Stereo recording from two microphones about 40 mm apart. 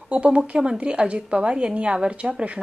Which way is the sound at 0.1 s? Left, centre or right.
Right.